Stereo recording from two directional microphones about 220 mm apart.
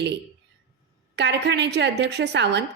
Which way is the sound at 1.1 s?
50° right (ahead or behind).